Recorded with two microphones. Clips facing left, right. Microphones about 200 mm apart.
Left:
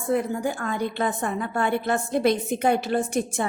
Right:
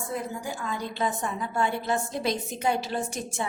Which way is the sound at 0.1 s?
60° left (ahead or behind).